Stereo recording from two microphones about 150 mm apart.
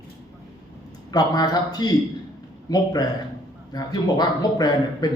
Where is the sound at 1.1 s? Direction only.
25° left (ahead or behind).